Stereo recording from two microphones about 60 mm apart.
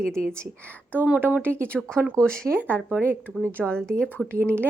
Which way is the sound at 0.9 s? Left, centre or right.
Right.